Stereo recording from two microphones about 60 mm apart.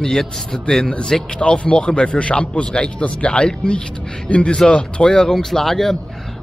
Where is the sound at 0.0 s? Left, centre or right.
Centre.